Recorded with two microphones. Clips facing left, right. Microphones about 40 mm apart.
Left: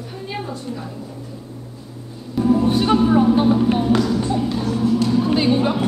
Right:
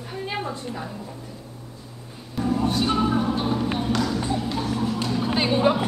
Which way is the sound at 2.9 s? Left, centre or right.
Centre.